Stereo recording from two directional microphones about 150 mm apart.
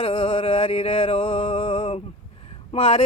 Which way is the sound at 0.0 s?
35° left (ahead or behind).